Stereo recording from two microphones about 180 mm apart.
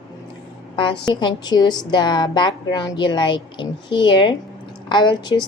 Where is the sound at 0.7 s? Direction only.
30° left (ahead or behind).